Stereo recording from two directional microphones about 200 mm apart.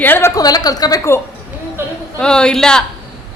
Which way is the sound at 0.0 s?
10° left (ahead or behind).